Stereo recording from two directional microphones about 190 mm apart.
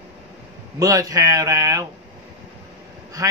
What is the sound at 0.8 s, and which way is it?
Speech, 20° right (ahead or behind).